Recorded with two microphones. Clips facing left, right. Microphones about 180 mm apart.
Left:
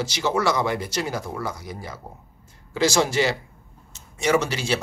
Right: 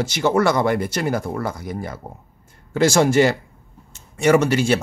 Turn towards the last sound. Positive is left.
turn(degrees=-50)  # may be behind; listen again after turning